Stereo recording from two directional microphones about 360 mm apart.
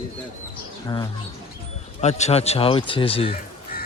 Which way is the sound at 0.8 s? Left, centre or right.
Centre.